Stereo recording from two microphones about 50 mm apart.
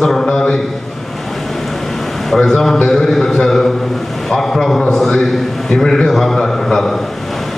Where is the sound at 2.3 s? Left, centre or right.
Centre.